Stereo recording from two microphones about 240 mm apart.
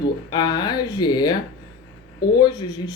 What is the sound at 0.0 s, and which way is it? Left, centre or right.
Speech, centre.